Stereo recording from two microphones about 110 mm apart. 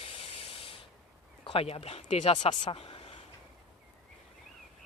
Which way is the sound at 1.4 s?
60° left (ahead or behind).